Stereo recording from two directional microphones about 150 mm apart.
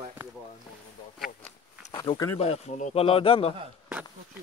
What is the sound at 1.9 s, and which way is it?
Speech, 30° left (ahead or behind).